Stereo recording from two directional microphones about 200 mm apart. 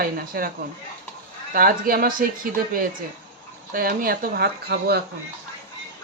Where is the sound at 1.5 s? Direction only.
45° right (ahead or behind).